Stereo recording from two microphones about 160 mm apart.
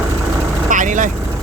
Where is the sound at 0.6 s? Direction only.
55° right (ahead or behind).